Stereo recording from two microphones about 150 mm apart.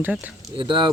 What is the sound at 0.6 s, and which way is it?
Speech, 30° right (ahead or behind).